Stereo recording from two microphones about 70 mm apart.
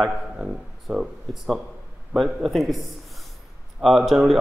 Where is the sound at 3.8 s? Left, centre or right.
Centre.